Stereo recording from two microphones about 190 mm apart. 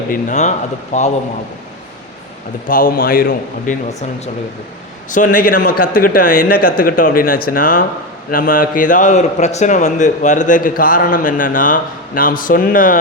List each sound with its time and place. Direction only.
0.1 s speech: 40° left (ahead or behind)
2.6 s a man's voice: 50° left (ahead or behind)
5.1 s a man's voice: 45° left (ahead or behind)